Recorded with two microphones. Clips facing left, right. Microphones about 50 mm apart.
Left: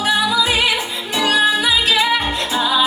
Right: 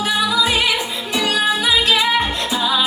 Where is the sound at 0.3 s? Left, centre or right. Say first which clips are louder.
Left 1 dB; centre.